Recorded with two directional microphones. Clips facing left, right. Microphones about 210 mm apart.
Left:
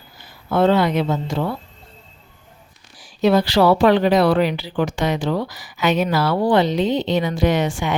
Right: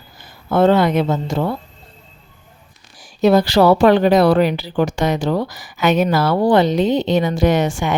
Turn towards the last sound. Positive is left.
turn(degrees=-45)  # may be behind; listen again after turning